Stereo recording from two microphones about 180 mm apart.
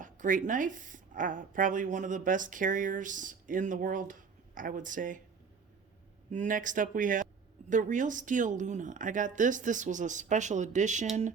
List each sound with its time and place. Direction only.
0.0 s a woman's voice: 45° right (ahead or behind)
6.3 s a woman's voice: 45° right (ahead or behind)